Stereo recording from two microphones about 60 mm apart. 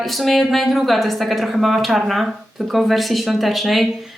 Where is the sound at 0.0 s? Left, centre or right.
Centre.